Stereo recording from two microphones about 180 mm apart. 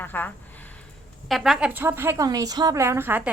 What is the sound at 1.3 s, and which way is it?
A woman's voice, centre (ahead or behind).